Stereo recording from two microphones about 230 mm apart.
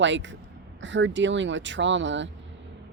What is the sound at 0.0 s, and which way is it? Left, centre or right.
Speech, right.